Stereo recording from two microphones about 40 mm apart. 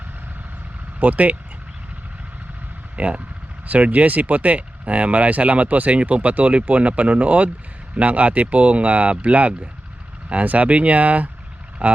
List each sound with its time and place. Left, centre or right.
0.9 s speech: right
2.9 s speech: right